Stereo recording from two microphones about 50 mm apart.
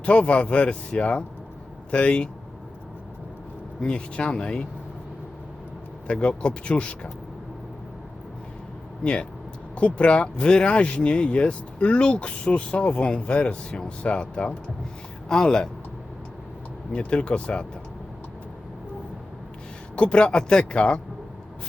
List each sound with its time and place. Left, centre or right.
0.0 s speech: left
3.8 s speech: centre
6.1 s speech: left
9.7 s speech: left
16.9 s speech: left
20.0 s speech: left